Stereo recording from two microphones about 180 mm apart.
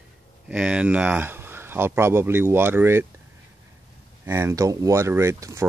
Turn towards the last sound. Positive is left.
turn(degrees=-15)  # may be behind; listen again after turning